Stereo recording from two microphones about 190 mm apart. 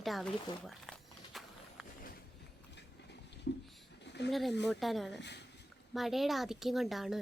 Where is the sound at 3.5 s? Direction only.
65° left (ahead or behind).